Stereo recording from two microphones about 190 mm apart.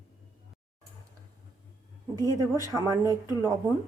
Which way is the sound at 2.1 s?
15° left (ahead or behind).